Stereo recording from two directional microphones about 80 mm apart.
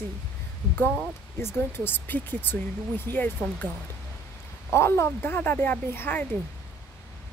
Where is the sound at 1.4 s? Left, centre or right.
Left.